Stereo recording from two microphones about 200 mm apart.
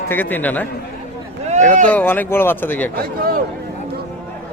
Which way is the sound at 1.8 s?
5° left (ahead or behind).